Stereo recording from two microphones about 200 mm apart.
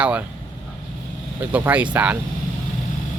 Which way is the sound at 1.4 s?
10° right (ahead or behind).